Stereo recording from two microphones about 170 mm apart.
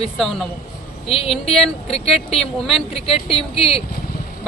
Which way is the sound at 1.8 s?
35° left (ahead or behind).